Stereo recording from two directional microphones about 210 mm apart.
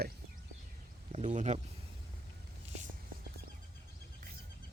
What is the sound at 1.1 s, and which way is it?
Speech, 35° right (ahead or behind).